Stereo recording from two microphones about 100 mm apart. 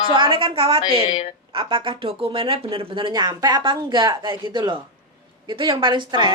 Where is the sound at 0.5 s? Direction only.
70° right (ahead or behind).